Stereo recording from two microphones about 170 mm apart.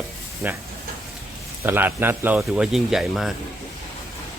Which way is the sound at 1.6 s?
10° right (ahead or behind).